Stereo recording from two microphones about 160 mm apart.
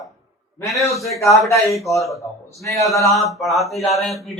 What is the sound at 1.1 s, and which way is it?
Speech, 20° left (ahead or behind).